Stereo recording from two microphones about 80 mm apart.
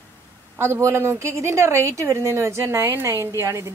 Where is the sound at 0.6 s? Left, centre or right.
Right.